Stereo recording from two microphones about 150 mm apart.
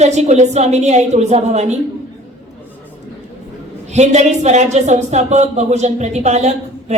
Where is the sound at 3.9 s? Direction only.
50° right (ahead or behind).